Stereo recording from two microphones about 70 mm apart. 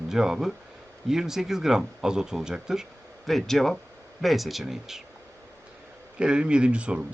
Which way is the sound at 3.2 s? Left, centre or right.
Centre.